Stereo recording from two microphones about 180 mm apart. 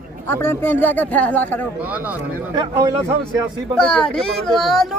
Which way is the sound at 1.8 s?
10° right (ahead or behind).